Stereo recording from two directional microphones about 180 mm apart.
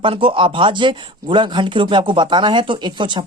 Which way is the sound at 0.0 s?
30° right (ahead or behind).